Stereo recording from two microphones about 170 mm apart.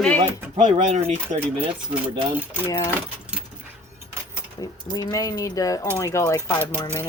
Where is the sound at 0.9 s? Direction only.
40° right (ahead or behind).